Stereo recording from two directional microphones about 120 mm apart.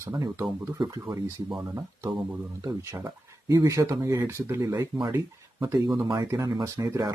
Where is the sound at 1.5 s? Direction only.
25° right (ahead or behind).